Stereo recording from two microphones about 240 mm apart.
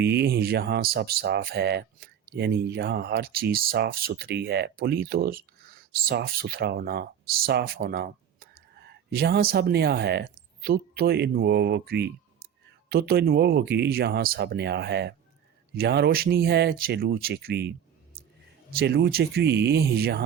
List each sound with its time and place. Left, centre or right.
0.0 s speech: right
18.7 s speech: right